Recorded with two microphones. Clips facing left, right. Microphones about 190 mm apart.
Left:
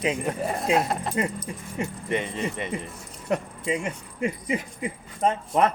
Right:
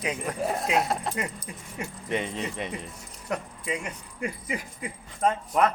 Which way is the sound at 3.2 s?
30° left (ahead or behind).